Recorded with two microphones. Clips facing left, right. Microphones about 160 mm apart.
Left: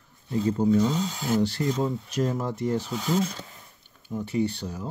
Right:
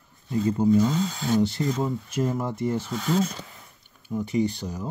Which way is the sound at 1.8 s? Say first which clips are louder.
Even; 10° right (ahead or behind).